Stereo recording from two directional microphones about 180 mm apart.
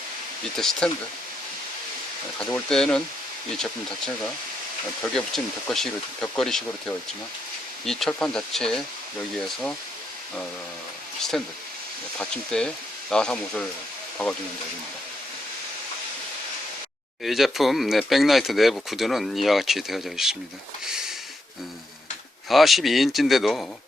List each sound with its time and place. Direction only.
0.5 s speech: 5° left (ahead or behind)
2.6 s speech: 5° left (ahead or behind)
7.9 s speech: centre (ahead or behind)
11.3 s speech: centre (ahead or behind)
17.2 s speech: centre (ahead or behind)
22.4 s speech: centre (ahead or behind)